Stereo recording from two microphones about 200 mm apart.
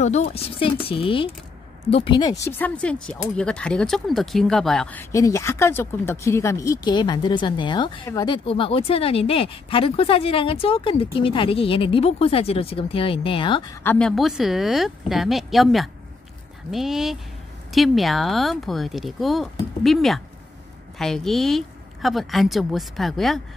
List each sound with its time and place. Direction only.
0.0 s speech: 35° left (ahead or behind)
2.4 s speech: 5° left (ahead or behind); by 13.7 s 25° left (ahead or behind)
13.8 s speech: 5° left (ahead or behind)